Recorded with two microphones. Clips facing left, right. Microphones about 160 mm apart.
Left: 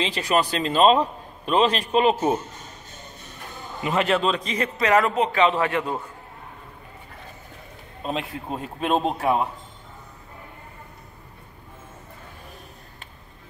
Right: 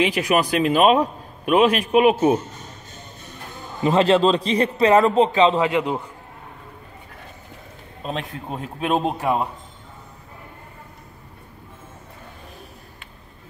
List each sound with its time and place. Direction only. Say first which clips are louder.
0.0 s a man's voice: right 3 dB; 10° right (ahead or behind)
3.8 s a man's voice: right 6 dB; 30° right (ahead or behind); by 6.0 s 15° right (ahead or behind)
8.0 s a man's voice: even; centre (ahead or behind)